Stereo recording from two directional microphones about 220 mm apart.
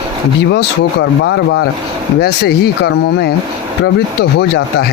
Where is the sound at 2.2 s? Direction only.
45° left (ahead or behind).